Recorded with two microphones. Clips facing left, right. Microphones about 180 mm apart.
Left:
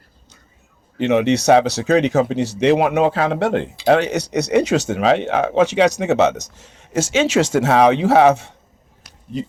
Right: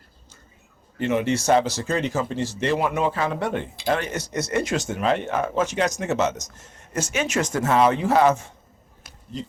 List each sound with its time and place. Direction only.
0.9 s speech: 75° left (ahead or behind)